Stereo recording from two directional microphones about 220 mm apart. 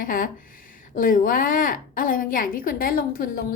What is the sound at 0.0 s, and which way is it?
A woman's voice, 40° left (ahead or behind).